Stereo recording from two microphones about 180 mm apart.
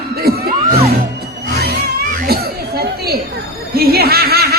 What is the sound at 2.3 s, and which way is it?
Chatter, 60° right (ahead or behind).